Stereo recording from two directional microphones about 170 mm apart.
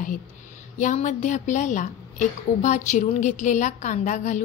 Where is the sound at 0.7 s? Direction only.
45° left (ahead or behind).